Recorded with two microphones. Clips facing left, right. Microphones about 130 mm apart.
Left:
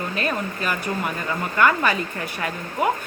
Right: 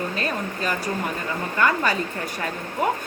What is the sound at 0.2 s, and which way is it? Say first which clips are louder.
Speech: left 1 dB; 35° right (ahead or behind).